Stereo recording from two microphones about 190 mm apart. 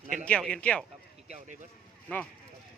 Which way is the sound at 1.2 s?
40° right (ahead or behind).